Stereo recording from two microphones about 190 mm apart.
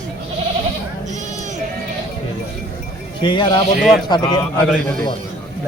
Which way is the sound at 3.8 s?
Centre (ahead or behind).